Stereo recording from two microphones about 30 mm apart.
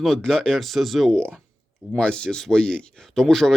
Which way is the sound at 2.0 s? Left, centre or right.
Left.